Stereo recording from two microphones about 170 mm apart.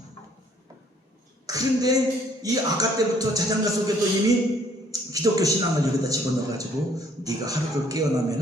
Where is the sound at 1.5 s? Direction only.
20° right (ahead or behind).